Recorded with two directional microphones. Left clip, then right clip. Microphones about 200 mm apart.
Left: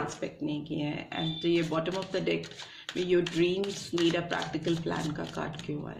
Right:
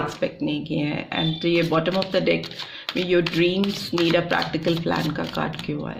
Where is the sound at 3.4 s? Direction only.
35° right (ahead or behind).